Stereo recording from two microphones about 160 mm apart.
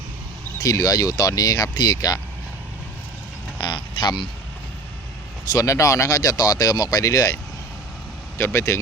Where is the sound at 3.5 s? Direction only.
30° left (ahead or behind).